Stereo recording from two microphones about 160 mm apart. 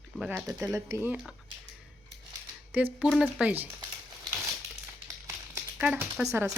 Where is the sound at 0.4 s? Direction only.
20° right (ahead or behind).